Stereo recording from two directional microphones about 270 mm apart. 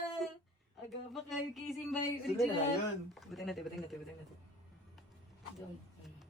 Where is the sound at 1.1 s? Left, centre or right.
Centre.